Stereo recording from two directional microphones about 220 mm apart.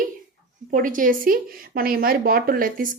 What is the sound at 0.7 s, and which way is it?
Speech, 35° right (ahead or behind).